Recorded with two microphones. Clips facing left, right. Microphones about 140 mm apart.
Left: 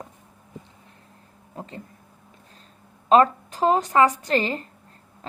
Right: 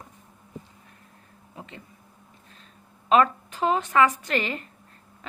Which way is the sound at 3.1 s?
35° left (ahead or behind).